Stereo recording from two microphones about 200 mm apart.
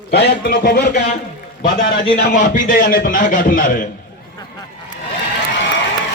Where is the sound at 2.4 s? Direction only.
40° left (ahead or behind).